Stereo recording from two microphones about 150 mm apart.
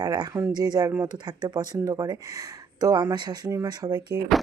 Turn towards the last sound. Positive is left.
turn(degrees=-25)  # may be behind; listen again after turning